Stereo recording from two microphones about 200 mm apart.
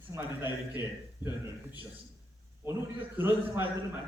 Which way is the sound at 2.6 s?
10° right (ahead or behind).